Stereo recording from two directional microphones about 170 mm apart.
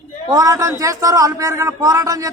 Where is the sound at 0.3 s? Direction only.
20° right (ahead or behind).